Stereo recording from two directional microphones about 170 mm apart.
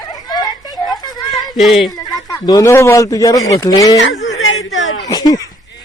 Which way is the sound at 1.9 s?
20° left (ahead or behind).